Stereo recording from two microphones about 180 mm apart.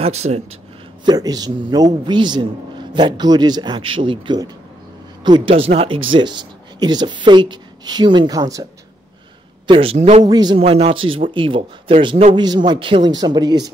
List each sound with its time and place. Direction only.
0.0 s a man's voice: 35° right (ahead or behind)
1.0 s a man's voice: 20° right (ahead or behind)
9.7 s a man's voice: 30° right (ahead or behind)
10.3 s a man's voice: 25° right (ahead or behind)